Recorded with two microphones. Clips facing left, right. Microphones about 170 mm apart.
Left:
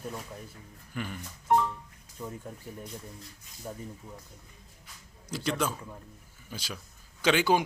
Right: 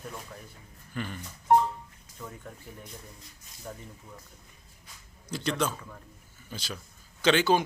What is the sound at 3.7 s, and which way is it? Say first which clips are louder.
Speech: left 2 dB; 15° left (ahead or behind).